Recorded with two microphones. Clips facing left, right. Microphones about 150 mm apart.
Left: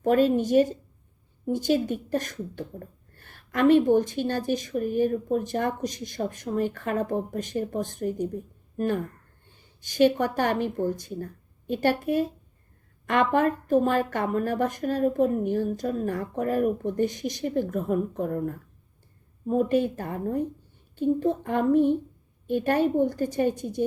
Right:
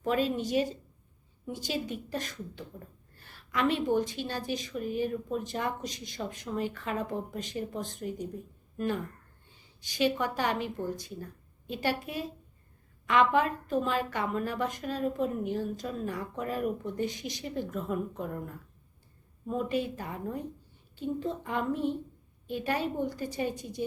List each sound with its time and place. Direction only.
0.0 s speech: 45° left (ahead or behind)